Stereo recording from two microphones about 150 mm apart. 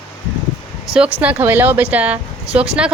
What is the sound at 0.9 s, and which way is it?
Speech, 10° right (ahead or behind).